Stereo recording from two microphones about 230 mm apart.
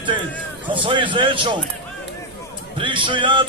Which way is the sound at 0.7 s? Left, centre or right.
Right.